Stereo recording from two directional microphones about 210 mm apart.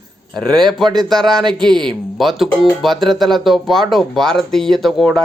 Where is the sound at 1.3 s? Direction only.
20° right (ahead or behind).